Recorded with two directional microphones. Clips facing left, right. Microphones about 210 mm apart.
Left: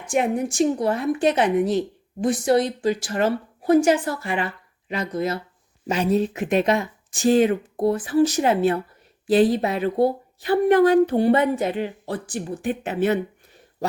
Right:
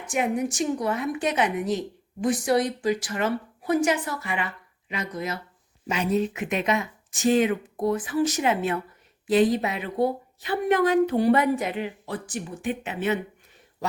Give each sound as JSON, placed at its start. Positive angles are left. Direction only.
{"t": 0.1, "sound": "a woman's voice", "side_deg": 30}